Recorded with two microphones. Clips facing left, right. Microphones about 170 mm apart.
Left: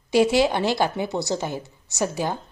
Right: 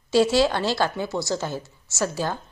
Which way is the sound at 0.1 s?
20° left (ahead or behind).